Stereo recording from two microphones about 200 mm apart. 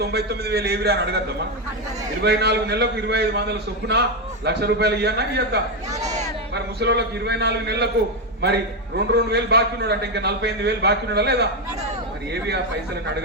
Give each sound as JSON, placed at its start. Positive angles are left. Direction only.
{"t": 0.0, "sound": "a man's voice", "side_deg": -55}
{"t": 2.2, "sound": "a man's voice", "side_deg": -55}
{"t": 9.1, "sound": "a man's voice", "side_deg": -55}